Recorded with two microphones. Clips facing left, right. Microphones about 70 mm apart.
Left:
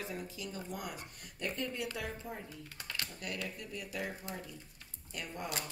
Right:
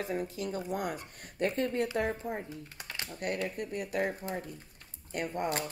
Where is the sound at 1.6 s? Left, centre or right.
Right.